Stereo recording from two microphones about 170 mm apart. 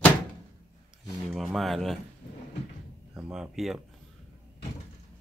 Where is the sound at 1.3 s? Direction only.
Centre (ahead or behind).